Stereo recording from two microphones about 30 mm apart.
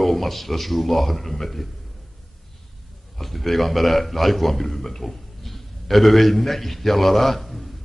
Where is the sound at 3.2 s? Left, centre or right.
Centre.